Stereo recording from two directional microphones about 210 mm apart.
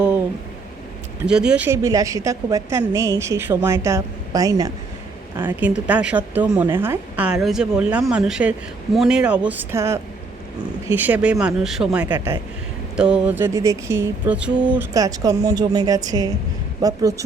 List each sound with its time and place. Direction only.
1.3 s a woman's voice: 5° right (ahead or behind)
14.9 s a woman's voice: 15° right (ahead or behind)